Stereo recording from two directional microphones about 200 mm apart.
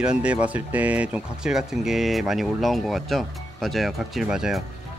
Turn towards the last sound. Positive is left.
turn(degrees=0)  # may be behind; listen again after turning